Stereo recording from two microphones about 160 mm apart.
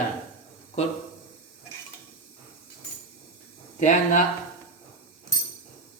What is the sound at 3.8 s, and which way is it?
Speech, 50° left (ahead or behind).